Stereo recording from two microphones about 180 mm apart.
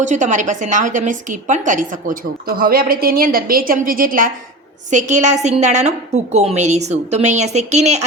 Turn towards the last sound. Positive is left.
turn(degrees=-40)  # may be behind; listen again after turning